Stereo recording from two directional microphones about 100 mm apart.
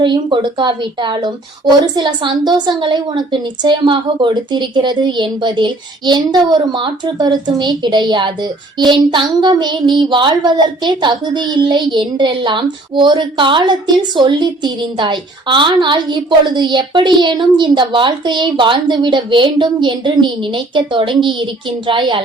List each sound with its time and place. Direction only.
0.0 s a woman's voice: 55° right (ahead or behind)